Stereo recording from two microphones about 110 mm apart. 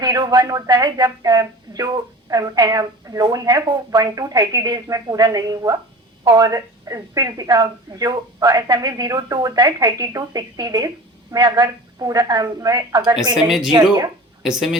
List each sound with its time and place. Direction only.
0.0 s speech: 40° right (ahead or behind)
14.4 s speech: 5° right (ahead or behind)